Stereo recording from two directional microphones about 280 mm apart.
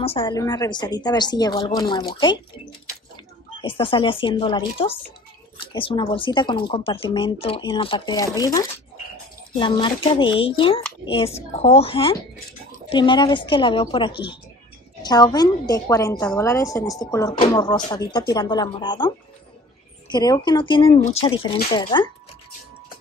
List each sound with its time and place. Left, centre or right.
0.0 s a woman's voice: centre
3.6 s a woman's voice: centre